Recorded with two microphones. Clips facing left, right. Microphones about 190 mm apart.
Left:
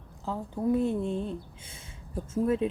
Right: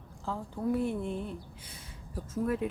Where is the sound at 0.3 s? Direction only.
20° left (ahead or behind).